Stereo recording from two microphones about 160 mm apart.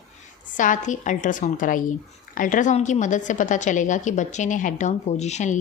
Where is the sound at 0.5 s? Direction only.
55° left (ahead or behind).